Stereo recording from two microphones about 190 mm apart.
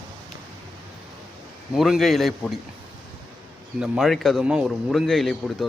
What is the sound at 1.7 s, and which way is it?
Speech, centre (ahead or behind).